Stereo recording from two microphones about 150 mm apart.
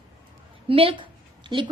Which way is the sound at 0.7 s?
35° right (ahead or behind).